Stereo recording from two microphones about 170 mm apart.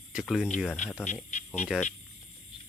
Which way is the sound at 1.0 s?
45° left (ahead or behind).